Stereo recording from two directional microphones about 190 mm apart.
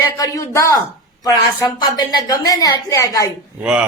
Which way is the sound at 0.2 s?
15° left (ahead or behind).